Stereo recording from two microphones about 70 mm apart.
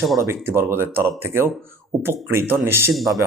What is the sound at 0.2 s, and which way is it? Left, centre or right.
Speech, right.